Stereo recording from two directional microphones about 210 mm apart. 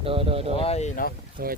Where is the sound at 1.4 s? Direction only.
45° right (ahead or behind).